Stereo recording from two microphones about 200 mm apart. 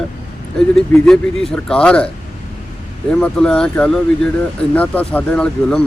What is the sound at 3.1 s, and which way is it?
Speech, 5° left (ahead or behind).